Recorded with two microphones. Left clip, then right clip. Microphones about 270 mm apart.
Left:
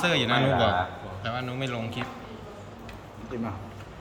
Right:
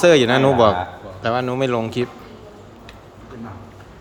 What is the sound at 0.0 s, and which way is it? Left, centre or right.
A man's voice, centre.